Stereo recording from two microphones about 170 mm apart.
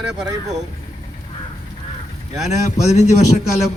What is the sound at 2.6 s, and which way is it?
Speech, 40° left (ahead or behind).